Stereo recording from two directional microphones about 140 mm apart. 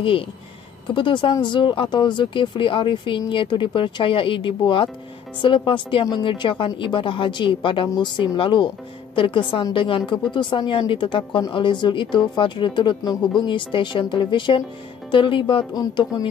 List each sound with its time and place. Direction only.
0.9 s speech: 35° left (ahead or behind)